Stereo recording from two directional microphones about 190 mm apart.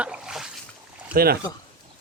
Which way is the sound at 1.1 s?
55° right (ahead or behind).